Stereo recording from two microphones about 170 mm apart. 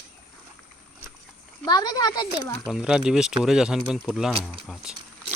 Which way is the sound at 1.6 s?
25° left (ahead or behind).